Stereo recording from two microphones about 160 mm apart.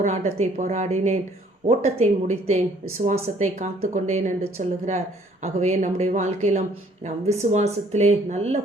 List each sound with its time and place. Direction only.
0.0 s speech: 45° right (ahead or behind)